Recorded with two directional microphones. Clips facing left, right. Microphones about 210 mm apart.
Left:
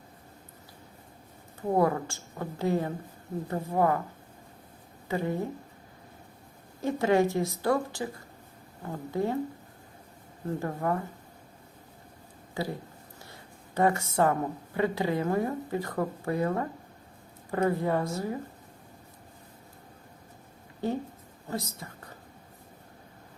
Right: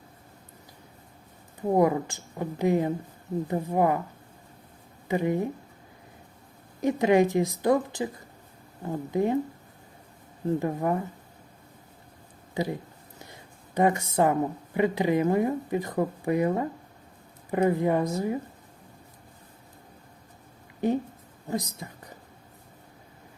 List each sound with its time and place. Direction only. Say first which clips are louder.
1.6 s a woman's voice: right 3 dB; 15° right (ahead or behind)
5.0 s speech: right 4 dB; 15° right (ahead or behind)
6.8 s a woman's voice: right 3 dB; 15° right (ahead or behind)
10.6 s a woman's voice: even; 15° right (ahead or behind)
12.6 s a woman's voice: right 4 dB; 20° right (ahead or behind)
13.7 s a woman's voice: right 2 dB; 15° right (ahead or behind)
20.8 s a woman's voice: right 5 dB; 15° right (ahead or behind)